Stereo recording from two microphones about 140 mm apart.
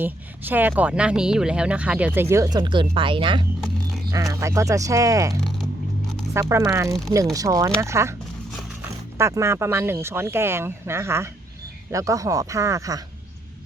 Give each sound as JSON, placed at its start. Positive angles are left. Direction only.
{"t": 0.0, "sound": "speech", "side_deg": -15}
{"t": 2.3, "sound": "speech", "side_deg": -25}
{"t": 4.1, "sound": "speech", "side_deg": -20}
{"t": 6.3, "sound": "speech", "side_deg": -20}